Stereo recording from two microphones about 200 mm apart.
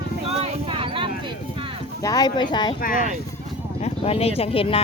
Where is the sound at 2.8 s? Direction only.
45° left (ahead or behind).